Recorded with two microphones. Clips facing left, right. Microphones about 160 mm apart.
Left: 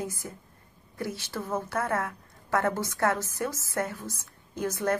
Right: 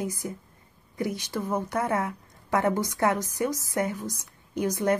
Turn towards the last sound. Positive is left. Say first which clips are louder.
# right 3 dB
turn(degrees=-15)  # may be behind; listen again after turning